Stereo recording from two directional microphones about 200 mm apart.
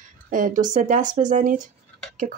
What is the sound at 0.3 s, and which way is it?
Speech, 40° right (ahead or behind).